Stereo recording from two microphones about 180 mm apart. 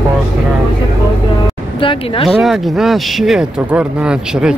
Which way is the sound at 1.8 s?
30° left (ahead or behind).